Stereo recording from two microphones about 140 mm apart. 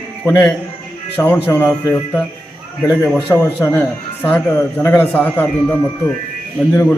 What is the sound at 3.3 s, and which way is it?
A man's voice, 15° left (ahead or behind).